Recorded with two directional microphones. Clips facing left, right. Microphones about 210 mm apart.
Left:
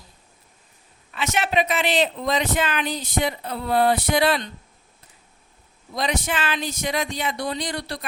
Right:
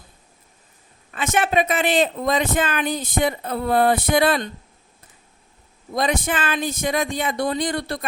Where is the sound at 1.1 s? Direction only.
50° right (ahead or behind).